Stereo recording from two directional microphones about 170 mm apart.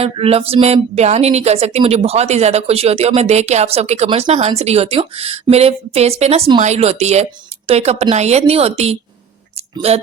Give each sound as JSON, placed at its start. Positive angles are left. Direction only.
{"t": 0.0, "sound": "speech", "side_deg": -35}